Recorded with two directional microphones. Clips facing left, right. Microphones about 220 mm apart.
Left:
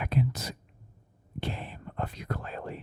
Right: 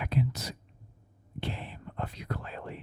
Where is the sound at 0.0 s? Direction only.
50° left (ahead or behind).